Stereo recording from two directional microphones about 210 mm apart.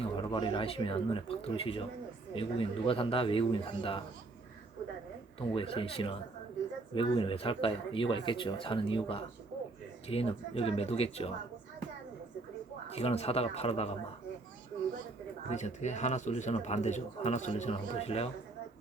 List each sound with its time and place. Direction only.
0.0 s speech: 25° left (ahead or behind)
5.5 s speech: 25° left (ahead or behind)
12.9 s speech: 30° left (ahead or behind)
15.4 s speech: 35° left (ahead or behind)